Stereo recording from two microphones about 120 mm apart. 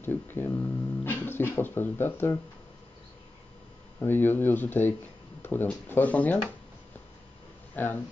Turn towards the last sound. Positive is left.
turn(degrees=15)  # may be behind; listen again after turning